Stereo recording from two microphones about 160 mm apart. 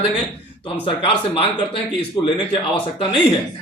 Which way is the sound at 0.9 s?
35° left (ahead or behind).